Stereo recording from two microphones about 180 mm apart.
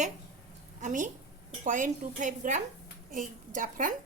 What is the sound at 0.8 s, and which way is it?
Speech, 45° right (ahead or behind).